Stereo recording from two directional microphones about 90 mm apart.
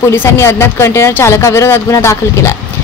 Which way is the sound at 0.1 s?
30° left (ahead or behind).